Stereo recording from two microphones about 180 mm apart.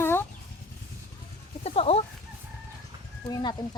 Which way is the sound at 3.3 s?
25° left (ahead or behind).